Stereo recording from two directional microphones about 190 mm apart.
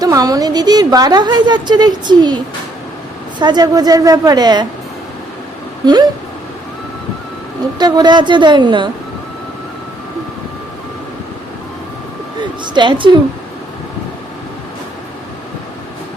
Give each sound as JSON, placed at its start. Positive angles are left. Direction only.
{"t": 0.0, "sound": "a woman's voice", "side_deg": -20}
{"t": 5.8, "sound": "a woman's voice", "side_deg": -20}
{"t": 7.8, "sound": "a woman's voice", "side_deg": -20}
{"t": 12.4, "sound": "speech", "side_deg": -25}